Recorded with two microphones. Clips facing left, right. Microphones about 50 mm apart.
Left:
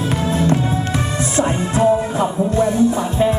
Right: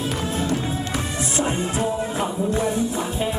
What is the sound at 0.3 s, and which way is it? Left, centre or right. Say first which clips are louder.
Music: left 9 dB; left.